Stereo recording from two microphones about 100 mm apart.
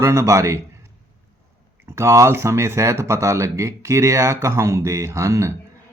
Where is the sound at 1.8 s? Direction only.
30° right (ahead or behind).